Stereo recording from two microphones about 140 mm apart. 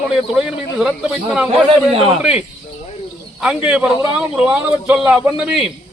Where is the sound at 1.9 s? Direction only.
45° right (ahead or behind).